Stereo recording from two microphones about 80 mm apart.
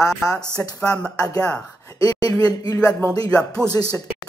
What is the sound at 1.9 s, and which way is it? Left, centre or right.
Speech, left.